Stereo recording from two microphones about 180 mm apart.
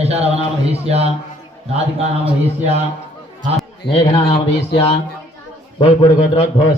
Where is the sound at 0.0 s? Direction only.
35° right (ahead or behind).